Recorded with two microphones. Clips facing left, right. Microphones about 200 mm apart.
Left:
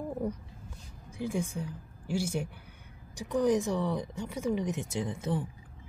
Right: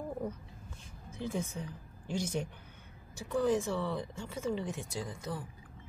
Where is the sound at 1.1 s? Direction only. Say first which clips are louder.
Left 4 dB; 10° left (ahead or behind).